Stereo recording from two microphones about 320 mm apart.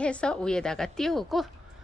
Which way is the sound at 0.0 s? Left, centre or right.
Centre.